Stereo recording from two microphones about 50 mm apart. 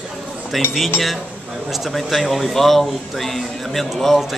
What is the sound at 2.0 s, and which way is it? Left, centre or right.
Speech, centre.